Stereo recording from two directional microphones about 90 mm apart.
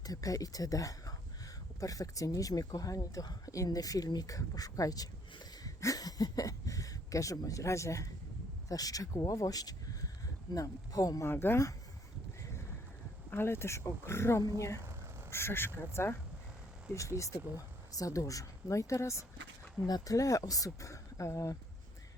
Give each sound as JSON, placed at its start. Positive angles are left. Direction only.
{"t": 0.0, "sound": "speech", "side_deg": 40}
{"t": 11.3, "sound": "speech", "side_deg": 25}
{"t": 13.3, "sound": "speech", "side_deg": 25}